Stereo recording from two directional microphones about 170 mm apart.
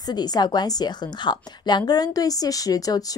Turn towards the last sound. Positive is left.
turn(degrees=20)  # may be behind; listen again after turning